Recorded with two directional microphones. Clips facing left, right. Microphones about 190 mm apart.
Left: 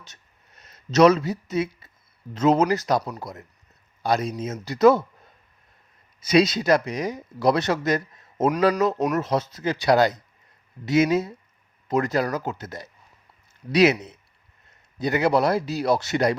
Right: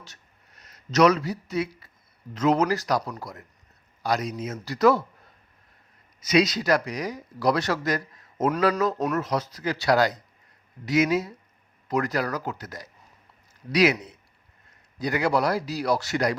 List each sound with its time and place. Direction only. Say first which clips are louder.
0.0 s a sound: right 2 dB; 20° left (ahead or behind)
2.3 s speech: left 3 dB; 25° left (ahead or behind)
6.1 s speech: left 3 dB; 30° left (ahead or behind)
9.0 s speech: left 3 dB; 10° left (ahead or behind)
9.2 s speech: left 3 dB; 25° left (ahead or behind)